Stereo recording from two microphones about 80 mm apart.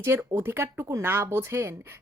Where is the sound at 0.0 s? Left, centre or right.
Right.